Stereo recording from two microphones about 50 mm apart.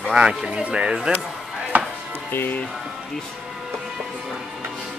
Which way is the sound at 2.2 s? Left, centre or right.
Left.